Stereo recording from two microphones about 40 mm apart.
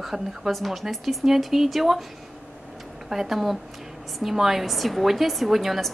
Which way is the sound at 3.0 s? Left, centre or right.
Centre.